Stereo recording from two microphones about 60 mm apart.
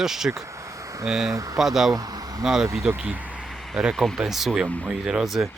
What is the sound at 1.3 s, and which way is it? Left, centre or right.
Speech, right.